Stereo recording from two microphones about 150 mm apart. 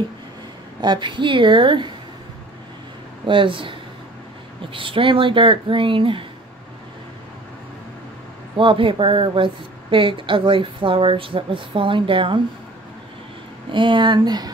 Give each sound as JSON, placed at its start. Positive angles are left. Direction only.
{"t": 0.7, "sound": "speech", "side_deg": -30}
{"t": 3.3, "sound": "speech", "side_deg": -35}
{"t": 4.7, "sound": "speech", "side_deg": -35}
{"t": 8.5, "sound": "speech", "side_deg": -35}
{"t": 13.7, "sound": "speech", "side_deg": -35}